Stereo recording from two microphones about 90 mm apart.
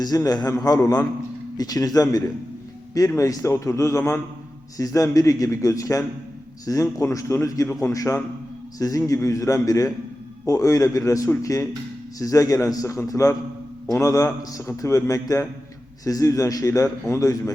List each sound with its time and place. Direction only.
0.0 s a man's voice: 45° left (ahead or behind)
4.8 s a man's voice: 40° left (ahead or behind)